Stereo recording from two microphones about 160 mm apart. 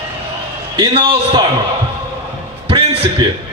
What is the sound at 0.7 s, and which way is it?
Speech, 30° right (ahead or behind).